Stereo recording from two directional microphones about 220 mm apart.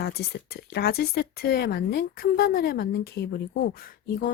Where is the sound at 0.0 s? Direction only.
45° left (ahead or behind).